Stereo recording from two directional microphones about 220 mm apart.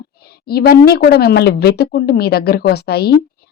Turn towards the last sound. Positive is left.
turn(degrees=45)  # may be behind; listen again after turning